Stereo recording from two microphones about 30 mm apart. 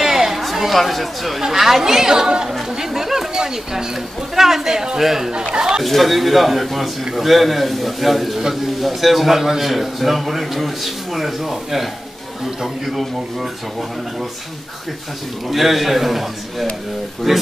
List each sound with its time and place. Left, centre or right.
0.0 s chatter: centre
0.7 s speech: centre
1.4 s speech: centre
5.3 s speech: right
5.9 s speech: centre
9.4 s speech: centre
9.7 s speech: centre
15.5 s speech: centre